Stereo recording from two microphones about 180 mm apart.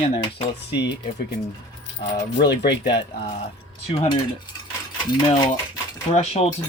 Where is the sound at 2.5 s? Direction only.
70° left (ahead or behind).